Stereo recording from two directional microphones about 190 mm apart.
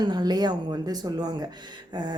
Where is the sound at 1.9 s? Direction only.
25° right (ahead or behind).